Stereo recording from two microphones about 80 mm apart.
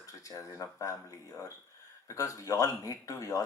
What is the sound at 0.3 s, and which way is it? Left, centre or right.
Speech, left.